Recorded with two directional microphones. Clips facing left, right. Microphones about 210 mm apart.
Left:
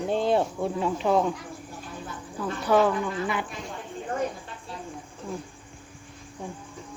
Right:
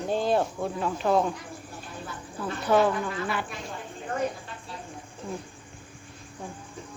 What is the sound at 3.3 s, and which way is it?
Speech, 15° left (ahead or behind).